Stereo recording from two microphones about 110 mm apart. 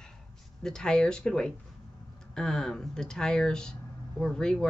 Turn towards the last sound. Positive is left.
turn(degrees=5)  # may be behind; listen again after turning